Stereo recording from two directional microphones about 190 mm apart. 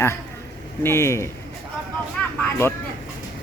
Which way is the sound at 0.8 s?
15° left (ahead or behind).